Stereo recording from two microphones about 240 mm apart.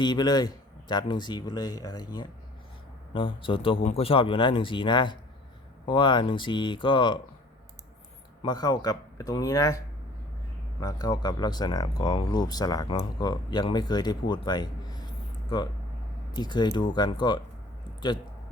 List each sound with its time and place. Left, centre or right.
0.0 s speech: centre
8.4 s speech: centre